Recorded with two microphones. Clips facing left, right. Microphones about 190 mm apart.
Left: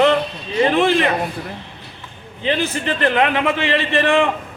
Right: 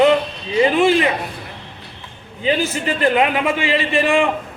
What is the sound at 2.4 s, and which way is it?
A man's voice, 10° right (ahead or behind).